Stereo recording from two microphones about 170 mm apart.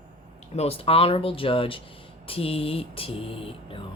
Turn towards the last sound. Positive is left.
turn(degrees=30)  # may be behind; listen again after turning